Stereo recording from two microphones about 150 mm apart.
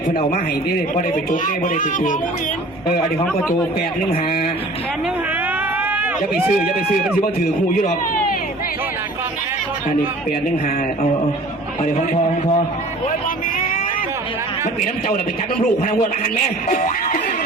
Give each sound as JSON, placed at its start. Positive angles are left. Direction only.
{"t": 0.9, "sound": "a man's voice", "side_deg": 60}
{"t": 5.8, "sound": "run", "side_deg": -10}
{"t": 13.6, "sound": "vehicle", "side_deg": 60}
{"t": 16.6, "sound": "a man's voice", "side_deg": 55}